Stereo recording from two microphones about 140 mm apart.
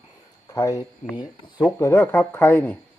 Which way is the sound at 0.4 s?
25° left (ahead or behind).